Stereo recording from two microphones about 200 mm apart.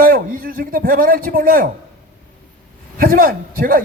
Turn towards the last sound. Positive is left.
turn(degrees=-45)  # may be behind; listen again after turning